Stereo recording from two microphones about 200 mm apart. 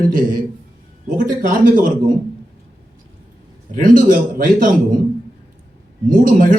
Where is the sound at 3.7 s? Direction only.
45° right (ahead or behind).